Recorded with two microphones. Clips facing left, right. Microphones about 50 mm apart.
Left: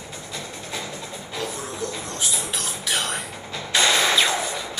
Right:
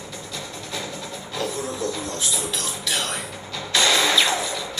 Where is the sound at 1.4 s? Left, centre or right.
Right.